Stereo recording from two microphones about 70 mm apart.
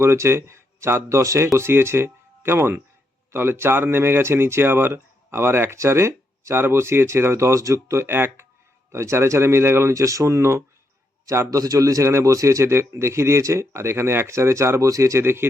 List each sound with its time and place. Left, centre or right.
0.0 s speech: right
1.5 s speech: right